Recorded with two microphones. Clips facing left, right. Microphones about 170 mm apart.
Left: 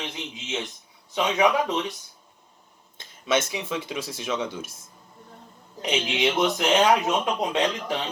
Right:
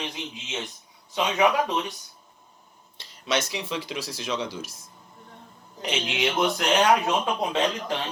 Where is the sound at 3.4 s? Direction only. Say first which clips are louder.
Left 1 dB; 25° left (ahead or behind).